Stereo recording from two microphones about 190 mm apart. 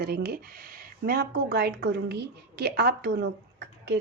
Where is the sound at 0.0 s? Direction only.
50° right (ahead or behind).